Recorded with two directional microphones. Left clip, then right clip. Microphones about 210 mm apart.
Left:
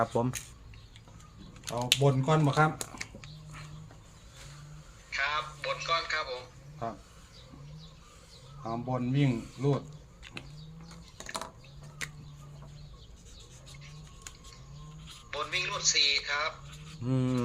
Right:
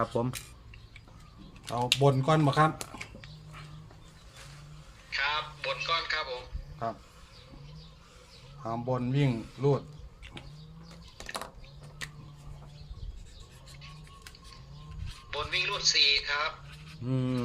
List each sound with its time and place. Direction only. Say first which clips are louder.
0.0 s speech: left 1 dB; 5° left (ahead or behind)
1.6 s speech: right 2 dB; 40° right (ahead or behind)
3.2 s dog: even; 5° left (ahead or behind)
5.1 s speech: right 1 dB; 5° right (ahead or behind)
8.6 s speech: right 2 dB; 35° right (ahead or behind)
15.3 s speech: right 2 dB; 5° right (ahead or behind)